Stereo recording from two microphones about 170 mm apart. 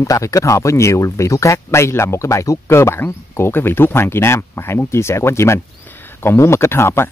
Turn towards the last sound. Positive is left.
turn(degrees=15)  # may be behind; listen again after turning